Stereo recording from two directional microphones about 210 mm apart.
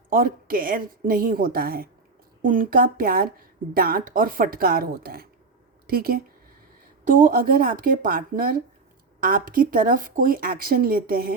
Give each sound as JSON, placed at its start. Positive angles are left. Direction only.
{"t": 0.1, "sound": "speech", "side_deg": -45}